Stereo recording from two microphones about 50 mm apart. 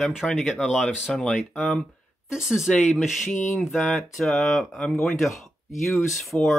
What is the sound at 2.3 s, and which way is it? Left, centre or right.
Speech, centre.